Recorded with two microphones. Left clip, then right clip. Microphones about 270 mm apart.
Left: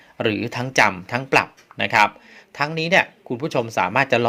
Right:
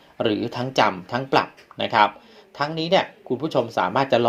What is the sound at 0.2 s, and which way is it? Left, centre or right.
Speech, left.